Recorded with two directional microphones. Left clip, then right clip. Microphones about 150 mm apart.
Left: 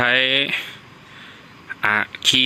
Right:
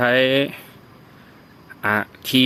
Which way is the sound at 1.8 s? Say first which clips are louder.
Left 4 dB; 5° right (ahead or behind).